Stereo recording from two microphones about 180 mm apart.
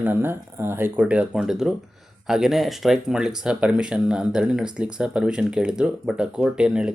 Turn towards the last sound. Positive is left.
turn(degrees=-5)  # may be behind; listen again after turning